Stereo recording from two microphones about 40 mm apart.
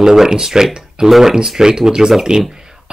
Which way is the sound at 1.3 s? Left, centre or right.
Centre.